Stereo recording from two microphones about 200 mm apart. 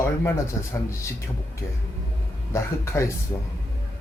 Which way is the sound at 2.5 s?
15° left (ahead or behind).